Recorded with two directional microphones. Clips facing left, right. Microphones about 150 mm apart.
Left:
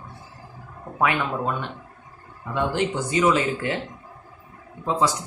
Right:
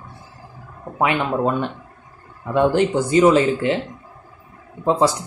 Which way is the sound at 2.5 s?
50° right (ahead or behind).